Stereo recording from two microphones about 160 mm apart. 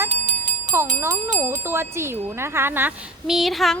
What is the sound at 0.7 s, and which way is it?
Speech, 15° right (ahead or behind).